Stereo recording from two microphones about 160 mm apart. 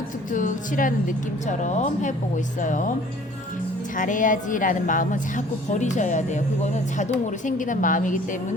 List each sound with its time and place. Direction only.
0.3 s a woman's voice: 55° left (ahead or behind)
3.9 s a woman's voice: 55° left (ahead or behind)